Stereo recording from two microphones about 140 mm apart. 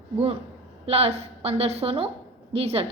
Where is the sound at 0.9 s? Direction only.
45° right (ahead or behind).